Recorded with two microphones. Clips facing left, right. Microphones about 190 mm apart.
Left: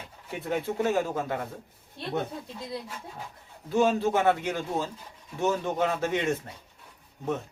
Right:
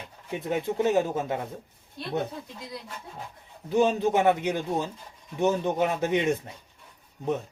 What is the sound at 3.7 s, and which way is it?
A man's voice, 20° right (ahead or behind).